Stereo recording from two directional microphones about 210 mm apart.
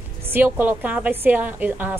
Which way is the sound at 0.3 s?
10° right (ahead or behind).